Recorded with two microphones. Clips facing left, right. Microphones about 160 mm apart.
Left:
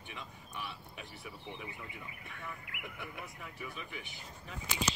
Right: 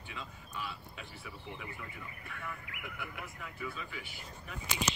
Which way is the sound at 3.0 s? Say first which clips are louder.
Right 1 dB; 20° left (ahead or behind).